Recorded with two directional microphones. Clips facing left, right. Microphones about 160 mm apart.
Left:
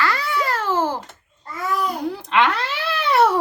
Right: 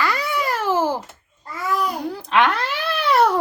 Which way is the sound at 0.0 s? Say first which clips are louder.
Even; 15° right (ahead or behind).